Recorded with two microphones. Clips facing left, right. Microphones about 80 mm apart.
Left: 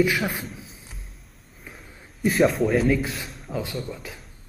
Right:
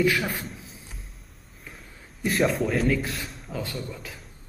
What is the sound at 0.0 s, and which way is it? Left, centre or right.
Speech, centre.